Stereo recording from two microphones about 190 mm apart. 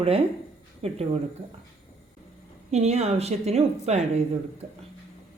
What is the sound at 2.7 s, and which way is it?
Speech, 35° right (ahead or behind).